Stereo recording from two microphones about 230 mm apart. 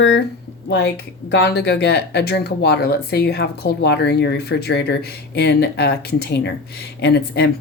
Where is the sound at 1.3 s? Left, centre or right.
Left.